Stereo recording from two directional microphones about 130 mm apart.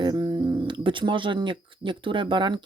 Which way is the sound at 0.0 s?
35° right (ahead or behind).